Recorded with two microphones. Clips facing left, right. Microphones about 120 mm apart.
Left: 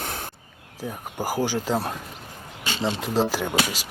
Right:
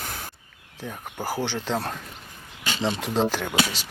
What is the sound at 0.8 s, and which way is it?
Speech, 10° left (ahead or behind).